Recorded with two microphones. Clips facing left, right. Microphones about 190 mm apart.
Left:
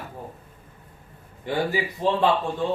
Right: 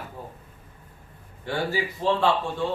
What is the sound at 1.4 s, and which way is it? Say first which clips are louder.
Speech: left 2 dB; 15° left (ahead or behind).